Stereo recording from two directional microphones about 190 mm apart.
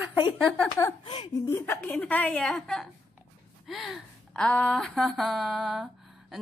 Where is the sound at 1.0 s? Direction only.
25° left (ahead or behind).